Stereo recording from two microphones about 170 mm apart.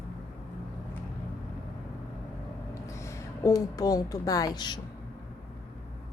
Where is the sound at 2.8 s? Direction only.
15° left (ahead or behind).